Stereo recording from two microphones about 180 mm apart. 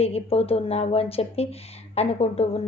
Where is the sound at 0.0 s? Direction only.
35° left (ahead or behind).